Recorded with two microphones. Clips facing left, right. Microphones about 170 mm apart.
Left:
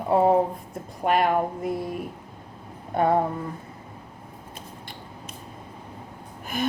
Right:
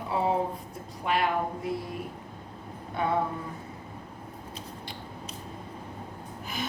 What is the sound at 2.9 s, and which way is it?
Speech, 45° left (ahead or behind).